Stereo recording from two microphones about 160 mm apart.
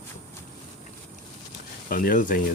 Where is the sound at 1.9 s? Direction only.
60° left (ahead or behind).